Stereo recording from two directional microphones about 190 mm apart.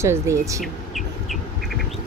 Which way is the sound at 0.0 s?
15° right (ahead or behind).